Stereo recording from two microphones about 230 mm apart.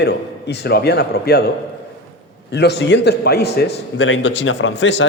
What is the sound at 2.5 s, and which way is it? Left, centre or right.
A man's voice, left.